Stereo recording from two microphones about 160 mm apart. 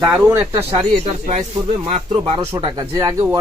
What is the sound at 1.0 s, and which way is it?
Speech, 40° right (ahead or behind).